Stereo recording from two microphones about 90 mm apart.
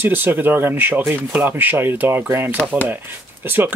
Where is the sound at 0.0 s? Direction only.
20° right (ahead or behind).